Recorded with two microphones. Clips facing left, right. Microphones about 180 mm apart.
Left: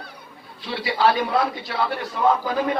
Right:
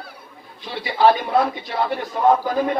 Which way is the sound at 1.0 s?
50° right (ahead or behind).